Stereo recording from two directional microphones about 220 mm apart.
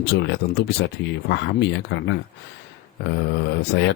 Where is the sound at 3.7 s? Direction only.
50° left (ahead or behind).